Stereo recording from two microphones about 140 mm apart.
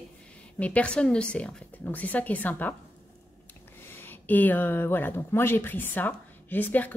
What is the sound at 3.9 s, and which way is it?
Speech, 15° left (ahead or behind).